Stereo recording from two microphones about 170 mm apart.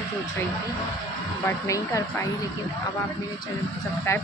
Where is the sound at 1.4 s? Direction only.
20° left (ahead or behind).